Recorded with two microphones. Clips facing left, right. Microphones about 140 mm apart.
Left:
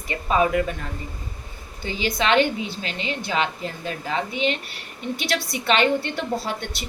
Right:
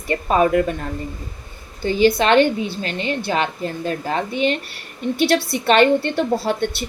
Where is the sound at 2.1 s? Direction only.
50° right (ahead or behind).